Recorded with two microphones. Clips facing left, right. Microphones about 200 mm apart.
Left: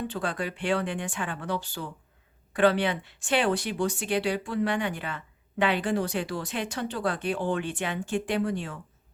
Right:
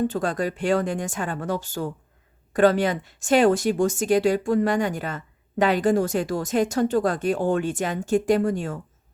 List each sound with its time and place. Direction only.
0.0 s speech: 45° right (ahead or behind)